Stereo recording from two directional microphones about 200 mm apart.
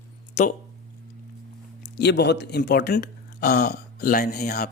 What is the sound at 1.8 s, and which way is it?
Speech, 55° left (ahead or behind).